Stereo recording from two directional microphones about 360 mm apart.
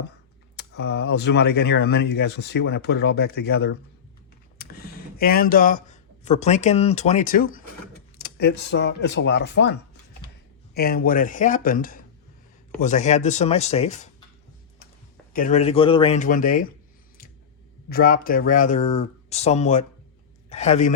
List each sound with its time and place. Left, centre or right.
0.5 s speech: left
10.8 s speech: left
15.3 s speech: left
17.8 s a man's voice: left